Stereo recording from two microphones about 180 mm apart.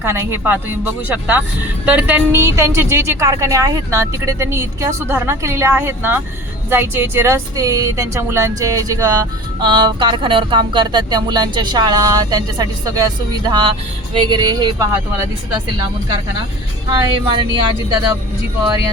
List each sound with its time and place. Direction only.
0.0 s a woman's voice: 15° right (ahead or behind)
16.9 s speech: 25° right (ahead or behind)